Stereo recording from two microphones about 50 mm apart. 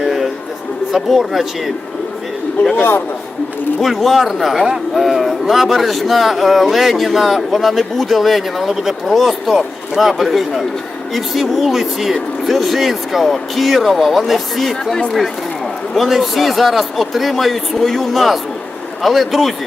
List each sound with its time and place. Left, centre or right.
0.0 s music: centre
0.9 s speech: centre
3.8 s speech: centre
16.0 s speech: centre